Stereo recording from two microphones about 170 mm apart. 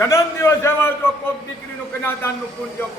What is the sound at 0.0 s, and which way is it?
Speech, 15° left (ahead or behind).